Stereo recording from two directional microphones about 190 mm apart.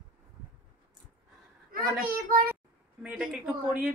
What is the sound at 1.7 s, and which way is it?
Speech, 50° right (ahead or behind).